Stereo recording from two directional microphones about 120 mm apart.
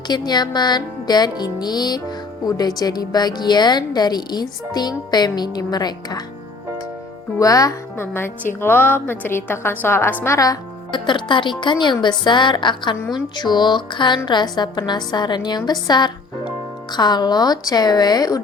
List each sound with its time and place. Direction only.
0.1 s music: 35° left (ahead or behind)
7.3 s speech: 30° left (ahead or behind)
8.0 s a woman's voice: 20° left (ahead or behind)
10.2 s music: 25° left (ahead or behind)